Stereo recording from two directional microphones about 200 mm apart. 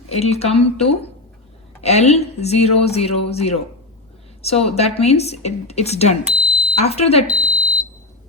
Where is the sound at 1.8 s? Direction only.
30° left (ahead or behind).